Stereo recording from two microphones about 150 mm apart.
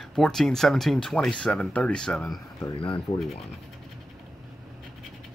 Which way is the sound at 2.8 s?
35° left (ahead or behind).